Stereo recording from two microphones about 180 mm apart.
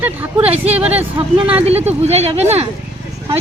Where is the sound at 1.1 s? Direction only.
25° right (ahead or behind).